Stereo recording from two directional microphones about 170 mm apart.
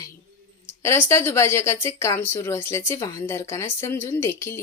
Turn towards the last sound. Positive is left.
turn(degrees=15)  # may be behind; listen again after turning